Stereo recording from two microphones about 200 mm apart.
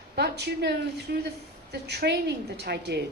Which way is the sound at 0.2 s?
55° right (ahead or behind).